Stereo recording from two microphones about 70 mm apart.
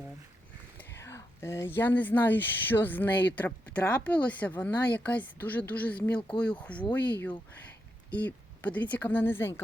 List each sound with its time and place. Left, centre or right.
0.9 s speech: left